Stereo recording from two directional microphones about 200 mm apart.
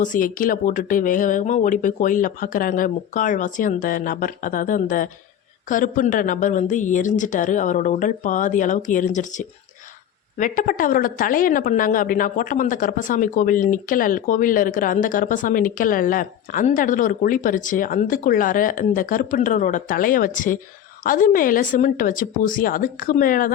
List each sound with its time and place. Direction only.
0.0 s a woman's voice: 40° left (ahead or behind)